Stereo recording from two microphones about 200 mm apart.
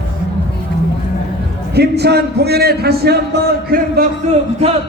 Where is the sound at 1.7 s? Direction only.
55° right (ahead or behind).